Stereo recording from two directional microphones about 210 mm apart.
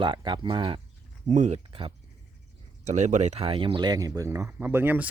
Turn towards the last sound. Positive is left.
turn(degrees=-10)  # may be behind; listen again after turning